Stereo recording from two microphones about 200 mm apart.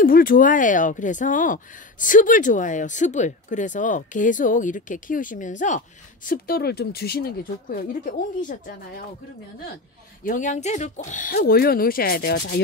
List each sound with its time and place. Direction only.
0.0 s speech: 45° left (ahead or behind)
10.2 s speech: 40° left (ahead or behind)